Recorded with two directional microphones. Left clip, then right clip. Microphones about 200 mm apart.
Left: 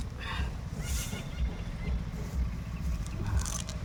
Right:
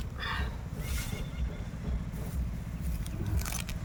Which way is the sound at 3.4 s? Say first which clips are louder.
Even; 40° right (ahead or behind).